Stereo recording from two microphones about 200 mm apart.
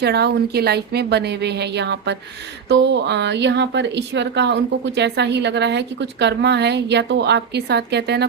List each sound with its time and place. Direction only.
0.0 s speech: 55° right (ahead or behind)